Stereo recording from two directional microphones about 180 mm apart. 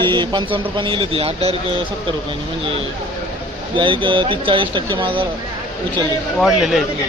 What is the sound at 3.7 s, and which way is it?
A man's voice, 25° right (ahead or behind).